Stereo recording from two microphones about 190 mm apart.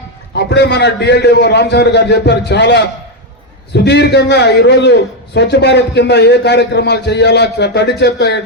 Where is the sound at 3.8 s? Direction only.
65° left (ahead or behind).